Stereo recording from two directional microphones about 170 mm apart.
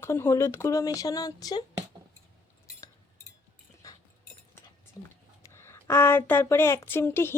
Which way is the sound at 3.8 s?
20° left (ahead or behind).